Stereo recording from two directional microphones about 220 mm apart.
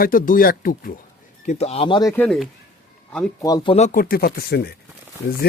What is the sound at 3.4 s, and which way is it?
Speech, 15° left (ahead or behind).